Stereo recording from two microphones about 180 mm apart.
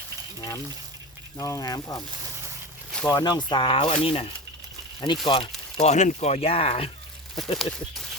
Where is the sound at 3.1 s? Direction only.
20° left (ahead or behind).